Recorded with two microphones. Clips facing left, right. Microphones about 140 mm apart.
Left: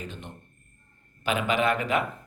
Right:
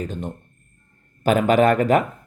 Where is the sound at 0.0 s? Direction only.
45° right (ahead or behind).